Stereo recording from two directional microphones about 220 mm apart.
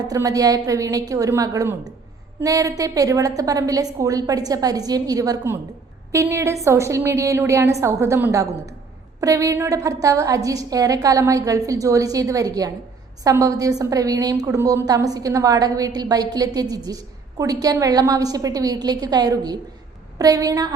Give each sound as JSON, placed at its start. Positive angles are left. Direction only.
{"t": 0.0, "sound": "a woman's voice", "side_deg": -15}